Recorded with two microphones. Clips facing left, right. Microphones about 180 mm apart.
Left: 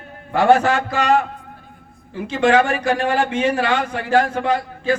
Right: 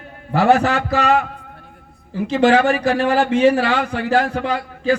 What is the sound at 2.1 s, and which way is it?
Speech, 40° right (ahead or behind).